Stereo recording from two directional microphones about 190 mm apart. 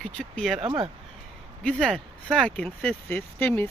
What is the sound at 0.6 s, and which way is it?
Speech, 30° right (ahead or behind).